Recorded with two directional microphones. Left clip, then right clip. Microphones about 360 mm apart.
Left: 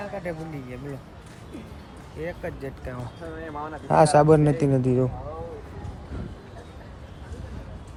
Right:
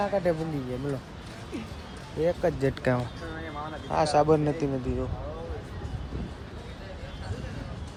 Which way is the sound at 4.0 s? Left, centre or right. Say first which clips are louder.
Left 5 dB; left.